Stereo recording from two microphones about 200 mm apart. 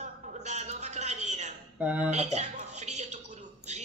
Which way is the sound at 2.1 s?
35° right (ahead or behind).